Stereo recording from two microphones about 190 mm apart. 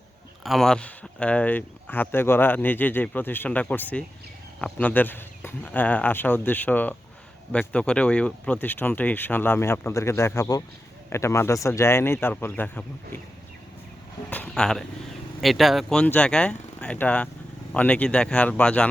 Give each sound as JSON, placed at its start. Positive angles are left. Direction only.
{"t": 0.4, "sound": "speech", "side_deg": 0}
{"t": 14.3, "sound": "speech", "side_deg": 5}